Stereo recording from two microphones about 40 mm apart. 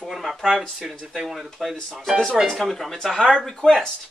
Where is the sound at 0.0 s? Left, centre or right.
Centre.